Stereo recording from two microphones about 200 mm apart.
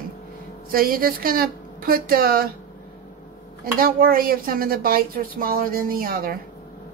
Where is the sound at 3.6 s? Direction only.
45° right (ahead or behind).